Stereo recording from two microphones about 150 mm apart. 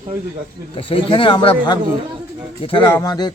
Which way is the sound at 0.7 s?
35° left (ahead or behind).